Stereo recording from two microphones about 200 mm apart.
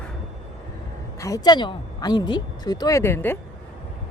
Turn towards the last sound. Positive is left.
turn(degrees=10)  # may be behind; listen again after turning